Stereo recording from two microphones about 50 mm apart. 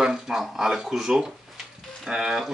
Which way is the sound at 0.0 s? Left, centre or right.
Centre.